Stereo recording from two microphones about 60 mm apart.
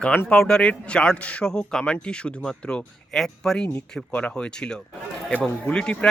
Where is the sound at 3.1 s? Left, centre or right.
Centre.